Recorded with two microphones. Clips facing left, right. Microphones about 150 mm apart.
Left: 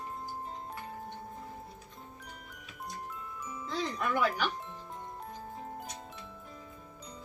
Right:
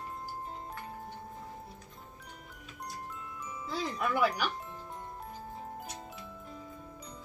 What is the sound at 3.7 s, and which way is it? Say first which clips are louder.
Music: even; 5° right (ahead or behind).